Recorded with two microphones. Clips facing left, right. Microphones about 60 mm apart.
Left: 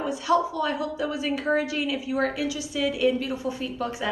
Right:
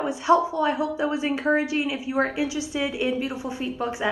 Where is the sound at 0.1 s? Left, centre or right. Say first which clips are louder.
Right 3 dB; right.